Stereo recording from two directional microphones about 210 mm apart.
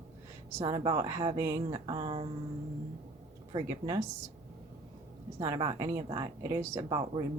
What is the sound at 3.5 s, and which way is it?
Speech, 15° right (ahead or behind).